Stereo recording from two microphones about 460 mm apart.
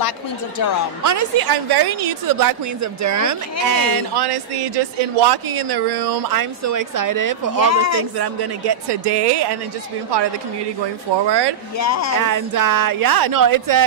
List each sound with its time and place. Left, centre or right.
1.0 s a woman's voice: right
7.6 s speech: left
8.0 s speech: right
11.8 s speech: left
12.2 s a woman's voice: right